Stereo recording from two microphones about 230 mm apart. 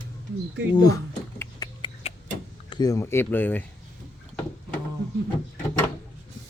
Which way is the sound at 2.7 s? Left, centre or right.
Centre.